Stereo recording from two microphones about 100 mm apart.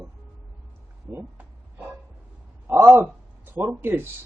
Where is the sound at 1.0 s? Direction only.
20° right (ahead or behind).